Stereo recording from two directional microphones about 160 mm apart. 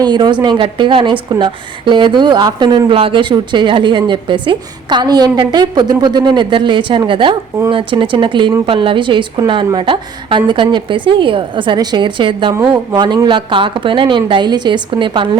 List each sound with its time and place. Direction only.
0.0 s a woman's voice: 25° right (ahead or behind)